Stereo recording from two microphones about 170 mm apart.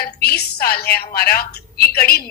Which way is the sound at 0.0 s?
65° left (ahead or behind).